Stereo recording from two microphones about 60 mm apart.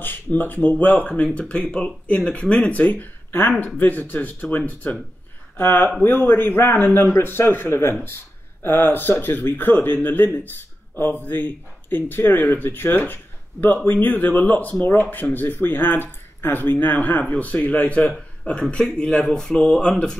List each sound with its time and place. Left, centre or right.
0.0 s speech: left
2.8 s speech: left; by 20.2 s centre